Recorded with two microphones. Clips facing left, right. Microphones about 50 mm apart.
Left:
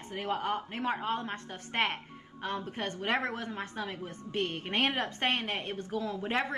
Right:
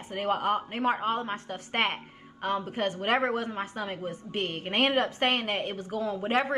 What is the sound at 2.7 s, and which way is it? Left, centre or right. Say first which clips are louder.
Speech: right 4 dB; right.